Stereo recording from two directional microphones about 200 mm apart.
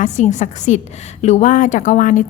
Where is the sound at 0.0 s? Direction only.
35° left (ahead or behind).